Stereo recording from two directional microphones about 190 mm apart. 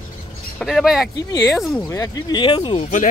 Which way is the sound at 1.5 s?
Centre (ahead or behind).